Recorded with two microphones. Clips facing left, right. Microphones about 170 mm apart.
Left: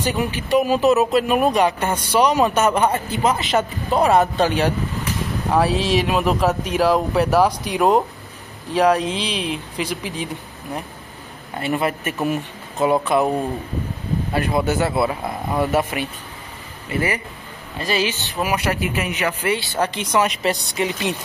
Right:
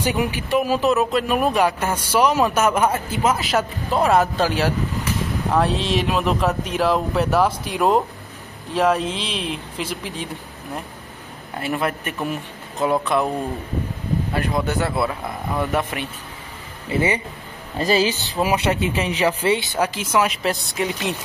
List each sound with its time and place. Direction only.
0.0 s speech: 15° right (ahead or behind)
0.5 s a man's voice: centre (ahead or behind)
14.5 s a man's voice: 5° left (ahead or behind)
16.9 s speech: 25° right (ahead or behind)
19.8 s a man's voice: 5° right (ahead or behind)